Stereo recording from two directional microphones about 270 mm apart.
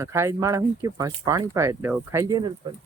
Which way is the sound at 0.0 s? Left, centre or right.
Centre.